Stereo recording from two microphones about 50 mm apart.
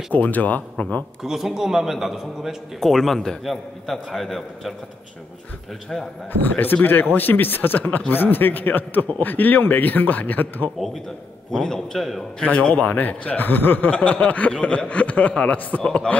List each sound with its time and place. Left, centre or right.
0.1 s a man's voice: left
1.2 s a man's voice: centre
2.8 s a man's voice: centre
6.4 s a man's voice: left
11.5 s a man's voice: centre
12.4 s speech: left
15.8 s a man's voice: centre